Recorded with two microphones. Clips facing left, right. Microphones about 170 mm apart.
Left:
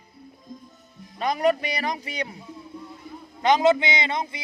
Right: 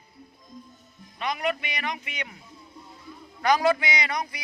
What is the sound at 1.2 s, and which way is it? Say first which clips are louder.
A man's voice: left 6 dB; 40° left (ahead or behind).